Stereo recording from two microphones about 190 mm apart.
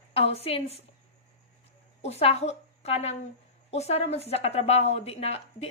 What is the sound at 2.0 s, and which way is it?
A woman's voice, 35° left (ahead or behind).